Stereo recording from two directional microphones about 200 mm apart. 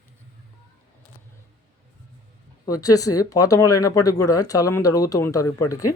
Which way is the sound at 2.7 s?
15° left (ahead or behind).